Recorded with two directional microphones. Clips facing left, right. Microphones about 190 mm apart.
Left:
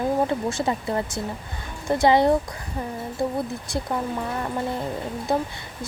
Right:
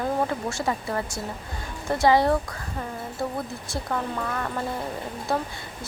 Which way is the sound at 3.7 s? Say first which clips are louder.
Even; 20° left (ahead or behind).